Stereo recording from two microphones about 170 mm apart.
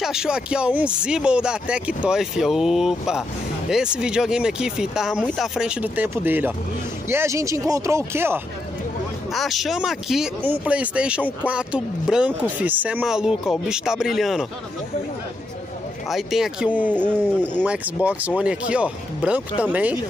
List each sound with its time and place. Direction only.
0.0 s speech: 5° right (ahead or behind)
9.3 s speech: centre (ahead or behind)
16.1 s speech: centre (ahead or behind)